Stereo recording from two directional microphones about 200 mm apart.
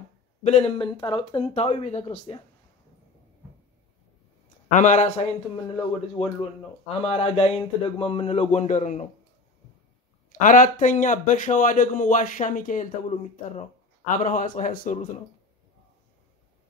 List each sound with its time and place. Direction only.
0.4 s speech: 30° left (ahead or behind)
4.6 s a man's voice: 35° left (ahead or behind)
10.3 s a man's voice: 40° left (ahead or behind)